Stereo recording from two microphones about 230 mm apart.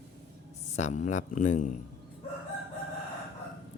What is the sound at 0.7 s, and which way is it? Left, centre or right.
Speech, left.